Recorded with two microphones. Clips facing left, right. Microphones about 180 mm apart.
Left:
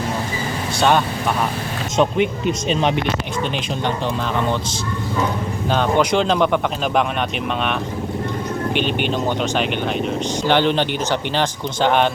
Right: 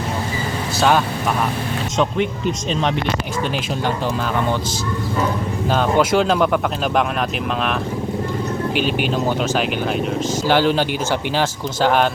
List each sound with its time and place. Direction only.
0.8 s speech: centre (ahead or behind)
5.7 s speech: 5° right (ahead or behind)
8.7 s speech: 5° right (ahead or behind)